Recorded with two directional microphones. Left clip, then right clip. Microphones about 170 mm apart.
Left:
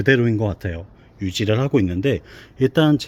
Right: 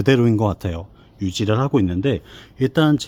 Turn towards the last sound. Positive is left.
turn(degrees=-10)  # may be behind; listen again after turning